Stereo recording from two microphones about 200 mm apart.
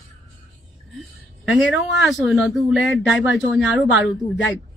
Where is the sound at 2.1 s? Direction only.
Centre (ahead or behind).